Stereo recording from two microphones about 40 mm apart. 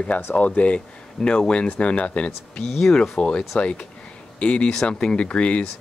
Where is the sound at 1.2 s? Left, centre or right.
Left.